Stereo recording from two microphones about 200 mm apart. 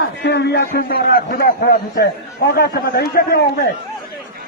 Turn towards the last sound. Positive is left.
turn(degrees=45)  # may be behind; listen again after turning